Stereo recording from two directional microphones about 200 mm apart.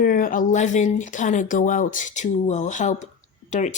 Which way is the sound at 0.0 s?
45° left (ahead or behind).